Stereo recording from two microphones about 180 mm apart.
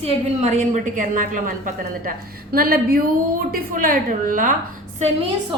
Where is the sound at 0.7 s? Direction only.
45° right (ahead or behind).